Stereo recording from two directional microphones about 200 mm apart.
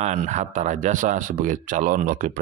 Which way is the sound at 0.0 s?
35° right (ahead or behind).